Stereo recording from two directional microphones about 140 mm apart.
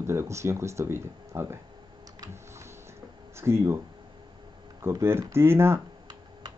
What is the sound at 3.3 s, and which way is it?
Speech, 20° right (ahead or behind).